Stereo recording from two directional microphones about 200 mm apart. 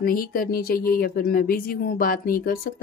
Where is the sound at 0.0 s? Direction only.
45° left (ahead or behind).